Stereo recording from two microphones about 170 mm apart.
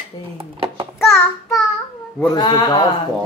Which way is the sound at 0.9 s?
Centre (ahead or behind).